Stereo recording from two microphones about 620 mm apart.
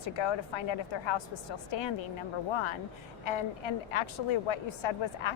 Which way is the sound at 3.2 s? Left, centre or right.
Left.